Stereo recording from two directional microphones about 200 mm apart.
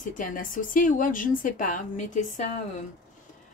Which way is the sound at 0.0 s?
40° left (ahead or behind).